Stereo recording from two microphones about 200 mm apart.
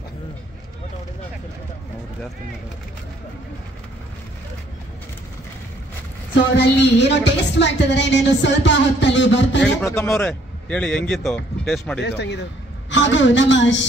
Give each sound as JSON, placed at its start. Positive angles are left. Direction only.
{"t": 6.5, "sound": "a woman's voice", "side_deg": 60}
{"t": 9.6, "sound": "a man's voice", "side_deg": 10}
{"t": 12.0, "sound": "a woman's voice", "side_deg": 60}